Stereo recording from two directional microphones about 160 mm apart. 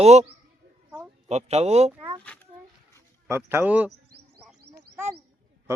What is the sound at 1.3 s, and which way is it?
Speech, 40° right (ahead or behind).